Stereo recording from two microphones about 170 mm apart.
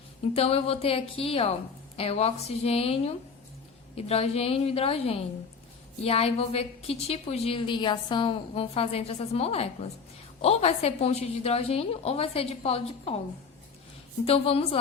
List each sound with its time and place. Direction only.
0.3 s a woman's voice: 35° left (ahead or behind)
14.3 s a woman's voice: 35° left (ahead or behind)